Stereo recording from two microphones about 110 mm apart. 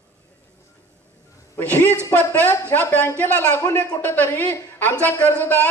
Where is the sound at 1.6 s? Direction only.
15° left (ahead or behind).